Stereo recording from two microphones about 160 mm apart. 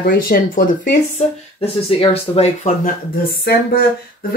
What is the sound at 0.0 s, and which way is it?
Speech, 60° left (ahead or behind).